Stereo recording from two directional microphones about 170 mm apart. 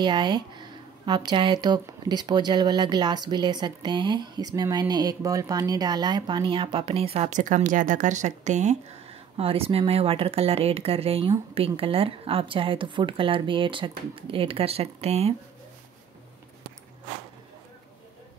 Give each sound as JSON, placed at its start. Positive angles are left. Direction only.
{"t": 0.0, "sound": "speech", "side_deg": -25}
{"t": 9.4, "sound": "speech", "side_deg": -35}